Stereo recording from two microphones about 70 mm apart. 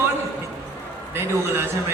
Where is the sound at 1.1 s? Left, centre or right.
Right.